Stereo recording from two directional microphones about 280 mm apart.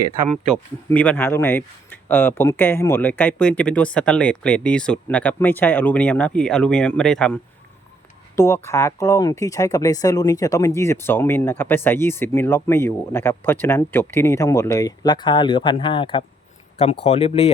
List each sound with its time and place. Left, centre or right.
0.9 s speech: centre
8.4 s speech: centre